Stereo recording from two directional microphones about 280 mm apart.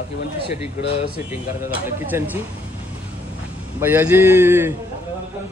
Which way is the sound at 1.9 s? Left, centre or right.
Centre.